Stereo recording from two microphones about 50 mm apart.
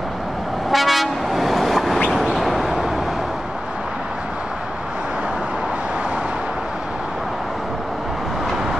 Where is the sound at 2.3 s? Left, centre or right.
Centre.